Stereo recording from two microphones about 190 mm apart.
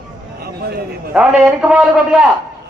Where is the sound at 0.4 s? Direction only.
55° right (ahead or behind).